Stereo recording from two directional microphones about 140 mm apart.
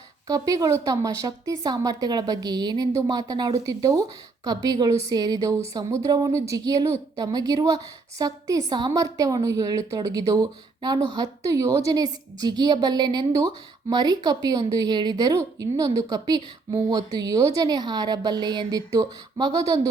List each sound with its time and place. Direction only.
0.3 s a woman's voice: 25° right (ahead or behind)